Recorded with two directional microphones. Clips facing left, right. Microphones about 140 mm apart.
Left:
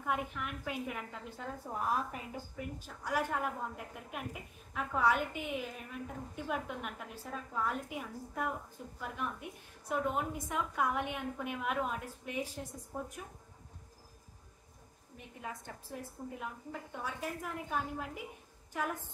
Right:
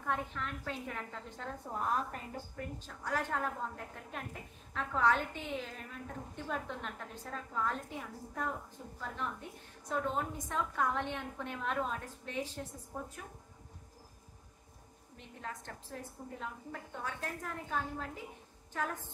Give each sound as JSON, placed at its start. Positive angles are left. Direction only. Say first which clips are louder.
{"t": 0.0, "sound": "a woman's voice", "louder": "left 1 dB", "side_deg": 10}
{"t": 15.1, "sound": "a woman's voice", "louder": "left 1 dB", "side_deg": 10}